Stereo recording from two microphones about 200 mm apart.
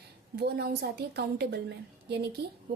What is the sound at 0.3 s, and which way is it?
A woman's voice, 55° right (ahead or behind).